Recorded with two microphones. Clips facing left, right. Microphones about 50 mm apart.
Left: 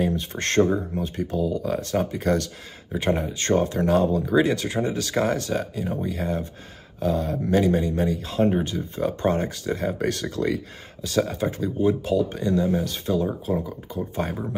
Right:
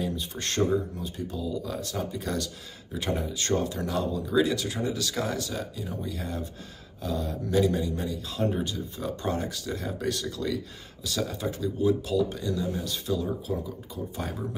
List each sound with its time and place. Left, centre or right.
0.0 s speech: left
0.6 s speech: left
1.0 s speech: left
2.9 s speech: left